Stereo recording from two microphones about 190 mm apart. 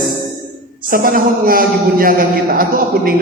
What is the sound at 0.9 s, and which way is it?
A man's voice, 50° right (ahead or behind).